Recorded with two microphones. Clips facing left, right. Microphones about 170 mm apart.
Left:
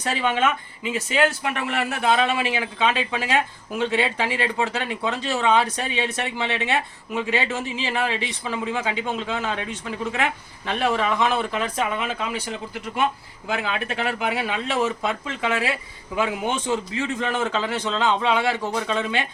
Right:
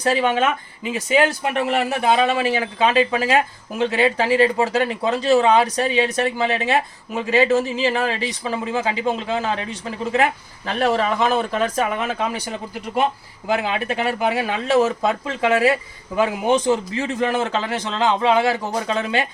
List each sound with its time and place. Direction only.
0.1 s speech: 40° right (ahead or behind)